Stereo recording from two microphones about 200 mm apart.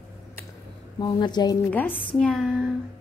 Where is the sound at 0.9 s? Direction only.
20° left (ahead or behind).